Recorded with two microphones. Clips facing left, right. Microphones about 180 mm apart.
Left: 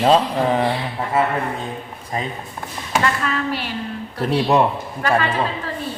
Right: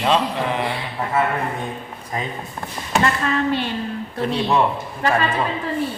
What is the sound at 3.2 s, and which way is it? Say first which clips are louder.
Speech: right 3 dB; 25° right (ahead or behind).